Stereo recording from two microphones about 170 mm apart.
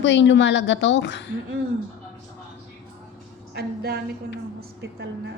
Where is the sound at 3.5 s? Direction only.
65° right (ahead or behind).